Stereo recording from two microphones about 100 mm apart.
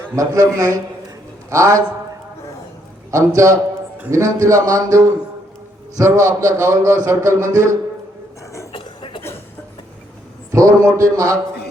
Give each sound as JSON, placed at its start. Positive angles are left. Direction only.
{"t": 0.2, "sound": "speech", "side_deg": -35}
{"t": 3.1, "sound": "speech", "side_deg": -30}
{"t": 8.7, "sound": "a sound", "side_deg": 55}
{"t": 10.5, "sound": "speech", "side_deg": -35}